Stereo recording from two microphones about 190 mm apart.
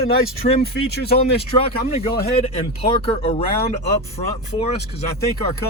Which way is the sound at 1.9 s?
30° left (ahead or behind).